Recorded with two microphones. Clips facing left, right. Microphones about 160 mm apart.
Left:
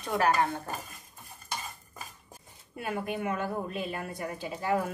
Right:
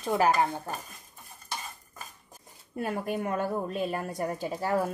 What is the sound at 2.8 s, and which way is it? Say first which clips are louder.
A woman's voice: right 2 dB; 40° right (ahead or behind).